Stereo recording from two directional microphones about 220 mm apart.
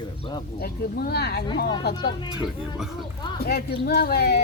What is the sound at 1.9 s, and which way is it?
Speech, 20° left (ahead or behind).